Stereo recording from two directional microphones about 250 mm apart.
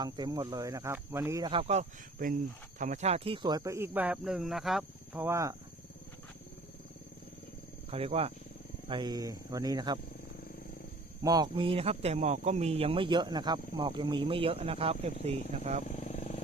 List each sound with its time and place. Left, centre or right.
0.0 s speech: centre
7.9 s speech: right
11.2 s speech: centre
15.9 s vehicle: left